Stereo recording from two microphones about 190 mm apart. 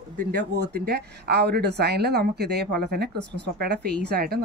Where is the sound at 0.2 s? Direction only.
60° right (ahead or behind).